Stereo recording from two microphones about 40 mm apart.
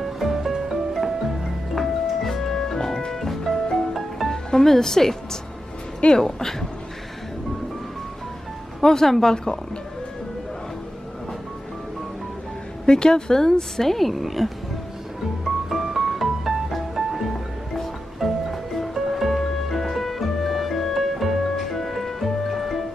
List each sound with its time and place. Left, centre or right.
0.0 s music: centre
4.3 s speech: centre
8.8 s speech: centre
12.8 s speech: centre
15.4 s music: centre